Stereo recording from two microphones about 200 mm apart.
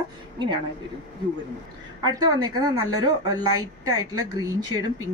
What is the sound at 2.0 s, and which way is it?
Speech, 20° right (ahead or behind).